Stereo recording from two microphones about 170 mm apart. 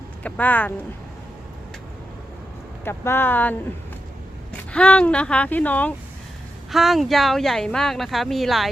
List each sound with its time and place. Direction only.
0.2 s speech: 10° left (ahead or behind)
2.8 s speech: 15° left (ahead or behind)
4.7 s speech: 5° left (ahead or behind)
6.7 s speech: centre (ahead or behind)